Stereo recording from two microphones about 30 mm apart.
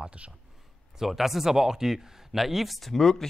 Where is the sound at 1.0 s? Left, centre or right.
Centre.